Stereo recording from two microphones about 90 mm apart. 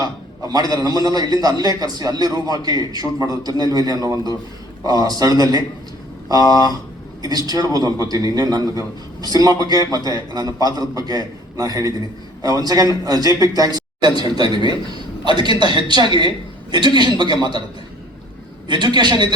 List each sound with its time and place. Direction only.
0.0 s a man's voice: 45° right (ahead or behind)
7.2 s a man's voice: 45° right (ahead or behind)
18.7 s a woman's voice: 55° right (ahead or behind)